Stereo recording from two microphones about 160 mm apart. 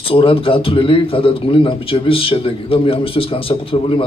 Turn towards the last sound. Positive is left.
turn(degrees=35)  # may be behind; listen again after turning